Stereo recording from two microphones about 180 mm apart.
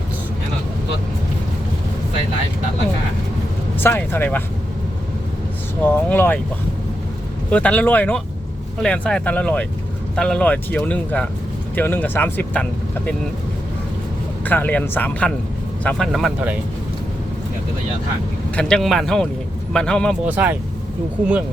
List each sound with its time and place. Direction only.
3.8 s speech: 10° left (ahead or behind)
5.8 s speech: 10° left (ahead or behind)
7.5 s speech: 5° left (ahead or behind)
14.4 s speech: 10° left (ahead or behind)
18.5 s speech: centre (ahead or behind)
20.2 s speech: 10° right (ahead or behind)